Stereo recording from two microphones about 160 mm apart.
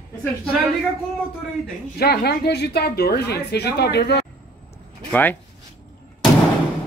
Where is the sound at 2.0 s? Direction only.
75° left (ahead or behind).